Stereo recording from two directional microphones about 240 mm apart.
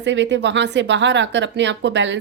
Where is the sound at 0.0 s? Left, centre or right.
Right.